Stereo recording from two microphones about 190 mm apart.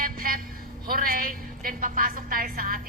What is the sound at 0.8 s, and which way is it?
A woman's voice, 50° right (ahead or behind).